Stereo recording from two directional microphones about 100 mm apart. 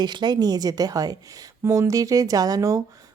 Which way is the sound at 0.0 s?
45° right (ahead or behind).